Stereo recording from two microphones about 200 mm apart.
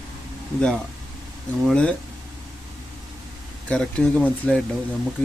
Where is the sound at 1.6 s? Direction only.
5° left (ahead or behind).